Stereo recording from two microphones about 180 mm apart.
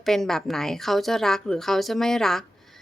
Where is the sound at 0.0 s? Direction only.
Centre (ahead or behind).